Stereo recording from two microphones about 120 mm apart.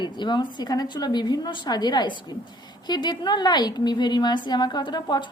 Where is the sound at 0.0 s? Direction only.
40° left (ahead or behind).